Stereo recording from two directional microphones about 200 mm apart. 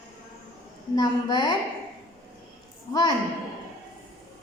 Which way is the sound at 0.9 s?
20° left (ahead or behind).